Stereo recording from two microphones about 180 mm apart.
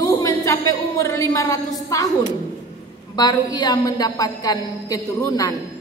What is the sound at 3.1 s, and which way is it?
A woman's voice, 20° left (ahead or behind).